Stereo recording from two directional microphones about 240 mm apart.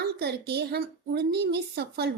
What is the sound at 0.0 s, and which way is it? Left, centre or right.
Speech, right.